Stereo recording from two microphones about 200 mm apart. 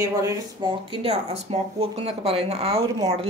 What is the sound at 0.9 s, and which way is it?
A woman's voice, 30° right (ahead or behind).